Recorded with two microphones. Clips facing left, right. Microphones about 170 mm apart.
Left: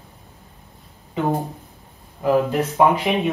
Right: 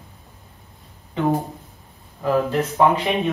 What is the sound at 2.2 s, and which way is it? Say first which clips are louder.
Speech: left 2 dB; 15° left (ahead or behind).